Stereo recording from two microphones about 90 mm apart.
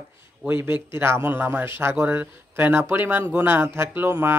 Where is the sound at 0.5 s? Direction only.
25° right (ahead or behind).